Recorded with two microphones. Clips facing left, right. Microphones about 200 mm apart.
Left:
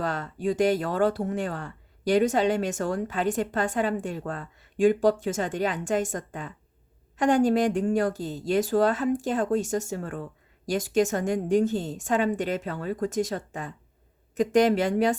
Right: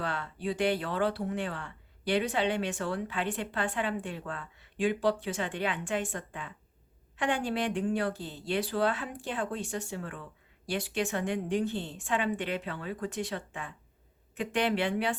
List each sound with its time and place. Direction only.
0.0 s speech: 40° left (ahead or behind)